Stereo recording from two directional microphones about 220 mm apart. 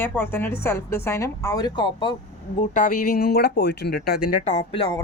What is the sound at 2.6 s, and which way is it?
Speech, 35° left (ahead or behind).